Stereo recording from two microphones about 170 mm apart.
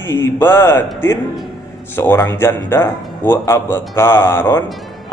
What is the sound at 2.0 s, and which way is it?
Speech, 15° left (ahead or behind).